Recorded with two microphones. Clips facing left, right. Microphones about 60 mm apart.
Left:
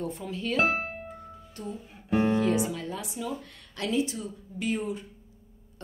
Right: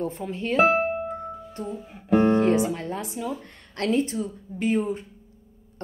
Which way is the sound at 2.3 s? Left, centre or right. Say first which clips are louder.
Right 5 dB; right.